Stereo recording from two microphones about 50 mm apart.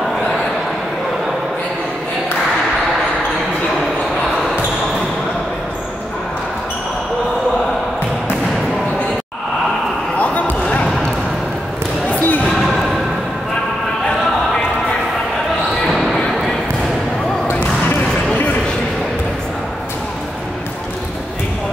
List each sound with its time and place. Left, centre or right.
10.1 s basketball bounce: left
12.1 s basketball bounce: left
12.4 s a sound: centre
15.9 s basketball bounce: centre